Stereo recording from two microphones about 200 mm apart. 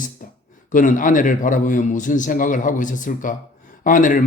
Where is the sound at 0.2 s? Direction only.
40° left (ahead or behind).